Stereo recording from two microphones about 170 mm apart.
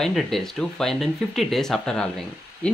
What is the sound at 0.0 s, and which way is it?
Speech, centre (ahead or behind).